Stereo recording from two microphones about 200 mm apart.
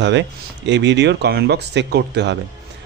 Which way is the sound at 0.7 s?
60° right (ahead or behind).